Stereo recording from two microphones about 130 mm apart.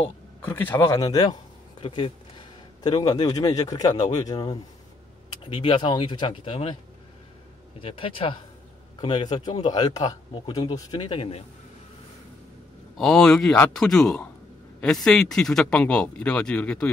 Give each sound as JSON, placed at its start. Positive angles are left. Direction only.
{"t": 0.4, "sound": "a man's voice", "side_deg": 15}
{"t": 7.8, "sound": "speech", "side_deg": 45}
{"t": 9.3, "sound": "a man's voice", "side_deg": 35}
{"t": 12.9, "sound": "a man's voice", "side_deg": 5}